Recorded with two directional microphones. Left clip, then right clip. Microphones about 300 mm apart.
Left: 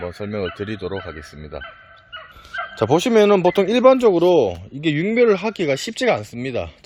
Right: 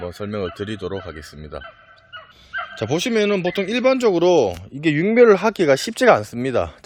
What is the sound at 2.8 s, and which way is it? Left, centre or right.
Speech, centre.